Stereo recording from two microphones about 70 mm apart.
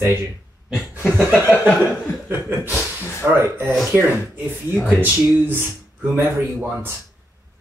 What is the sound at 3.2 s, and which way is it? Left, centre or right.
Speech, right.